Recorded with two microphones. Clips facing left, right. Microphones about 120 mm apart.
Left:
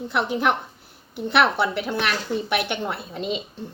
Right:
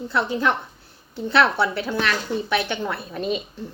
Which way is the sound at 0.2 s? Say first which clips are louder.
Even; 15° left (ahead or behind).